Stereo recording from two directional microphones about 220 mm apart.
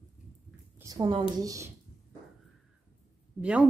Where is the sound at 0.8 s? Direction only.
20° right (ahead or behind).